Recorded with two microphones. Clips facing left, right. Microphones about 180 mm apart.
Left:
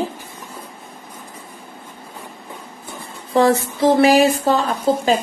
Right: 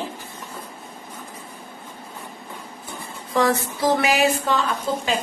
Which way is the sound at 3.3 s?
25° left (ahead or behind).